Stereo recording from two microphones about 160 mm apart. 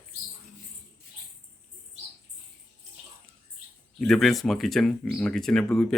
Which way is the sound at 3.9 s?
Centre (ahead or behind).